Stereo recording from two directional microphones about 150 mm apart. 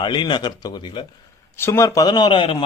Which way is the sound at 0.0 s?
30° left (ahead or behind).